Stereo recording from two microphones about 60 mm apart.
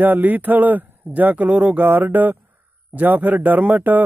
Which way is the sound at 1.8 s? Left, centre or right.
Right.